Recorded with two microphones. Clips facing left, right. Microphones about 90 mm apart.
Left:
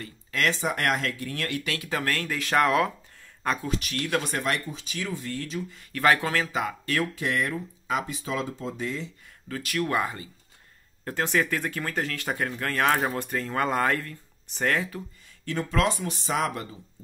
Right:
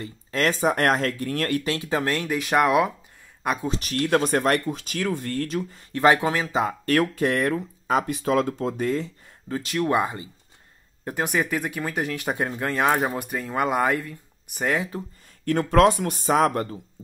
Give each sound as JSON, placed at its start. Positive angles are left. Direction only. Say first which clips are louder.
{"t": 0.0, "sound": "speech", "louder": "right 3 dB", "side_deg": -35}
{"t": 1.6, "sound": "speech", "louder": "right 5 dB", "side_deg": -30}
{"t": 3.6, "sound": "speech", "louder": "right 4 dB", "side_deg": -30}
{"t": 4.2, "sound": "speech", "louder": "right 7 dB", "side_deg": -50}
{"t": 5.7, "sound": "speech", "louder": "right 3 dB", "side_deg": -30}
{"t": 6.9, "sound": "speech", "louder": "right 8 dB", "side_deg": -50}
{"t": 9.5, "sound": "speech", "louder": "right 4 dB", "side_deg": -25}
{"t": 15.4, "sound": "speech", "louder": "right 8 dB", "side_deg": -55}